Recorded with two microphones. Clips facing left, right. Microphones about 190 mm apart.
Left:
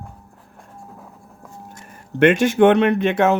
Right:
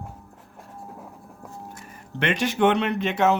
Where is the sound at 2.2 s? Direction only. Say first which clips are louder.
Left 8 dB; 50° left (ahead or behind).